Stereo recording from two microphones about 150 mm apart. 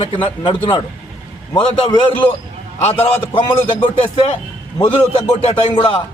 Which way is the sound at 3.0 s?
35° left (ahead or behind).